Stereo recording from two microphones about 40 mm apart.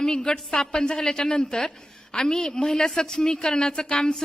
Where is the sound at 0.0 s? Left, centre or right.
Centre.